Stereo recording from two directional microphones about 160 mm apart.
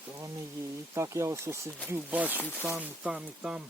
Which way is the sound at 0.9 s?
15° right (ahead or behind).